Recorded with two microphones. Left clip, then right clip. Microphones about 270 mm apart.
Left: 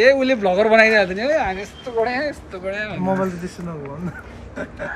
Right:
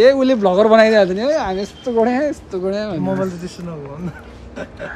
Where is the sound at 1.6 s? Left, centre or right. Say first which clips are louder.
Right 5 dB; right.